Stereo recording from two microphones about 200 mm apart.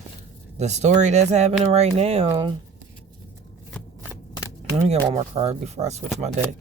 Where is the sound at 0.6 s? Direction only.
35° right (ahead or behind).